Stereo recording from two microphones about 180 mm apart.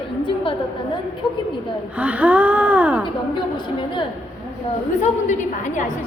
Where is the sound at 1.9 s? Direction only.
10° right (ahead or behind).